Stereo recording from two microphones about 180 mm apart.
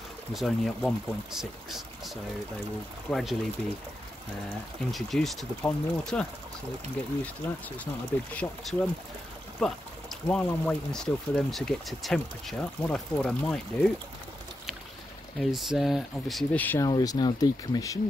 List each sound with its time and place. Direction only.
0.3 s speech: centre (ahead or behind)
4.9 s speech: centre (ahead or behind)
8.4 s speech: 5° left (ahead or behind)
15.3 s speech: centre (ahead or behind)
16.9 s speech: 20° left (ahead or behind)